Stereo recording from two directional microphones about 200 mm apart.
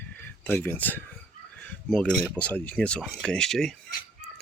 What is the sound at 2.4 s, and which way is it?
Speech, 5° left (ahead or behind).